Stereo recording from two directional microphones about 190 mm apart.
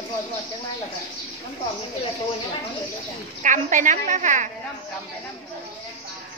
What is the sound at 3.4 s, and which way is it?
A woman's voice, 40° right (ahead or behind).